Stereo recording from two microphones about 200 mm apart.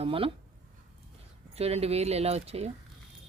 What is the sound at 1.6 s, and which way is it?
Speech, 30° right (ahead or behind).